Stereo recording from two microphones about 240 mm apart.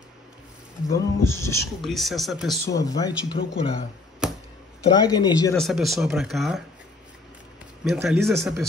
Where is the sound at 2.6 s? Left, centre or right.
Centre.